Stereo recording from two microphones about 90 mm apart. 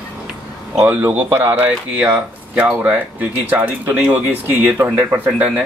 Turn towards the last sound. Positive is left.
turn(degrees=-20)  # may be behind; listen again after turning